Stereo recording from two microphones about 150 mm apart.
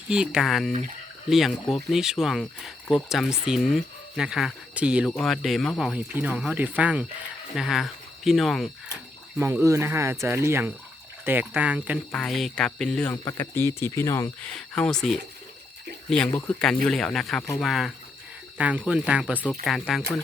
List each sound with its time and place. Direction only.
0.1 s speech: 5° right (ahead or behind)
5.9 s speech: 10° right (ahead or behind)
9.4 s speech: 20° right (ahead or behind)
12.1 s speech: 5° left (ahead or behind)
13.2 s speech: 15° left (ahead or behind)
14.4 s speech: 5° left (ahead or behind)